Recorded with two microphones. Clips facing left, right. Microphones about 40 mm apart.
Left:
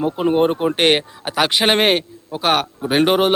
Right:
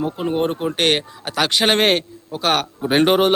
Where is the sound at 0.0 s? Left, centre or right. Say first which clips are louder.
Left 4 dB; centre.